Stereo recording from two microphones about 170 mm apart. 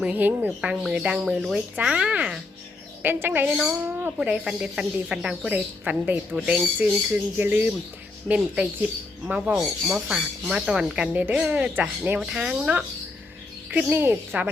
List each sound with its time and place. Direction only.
0.0 s speech: 10° right (ahead or behind)
9.2 s speech: 5° right (ahead or behind)